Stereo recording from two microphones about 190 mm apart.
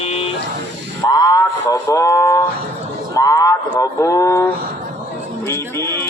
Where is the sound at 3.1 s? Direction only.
20° left (ahead or behind).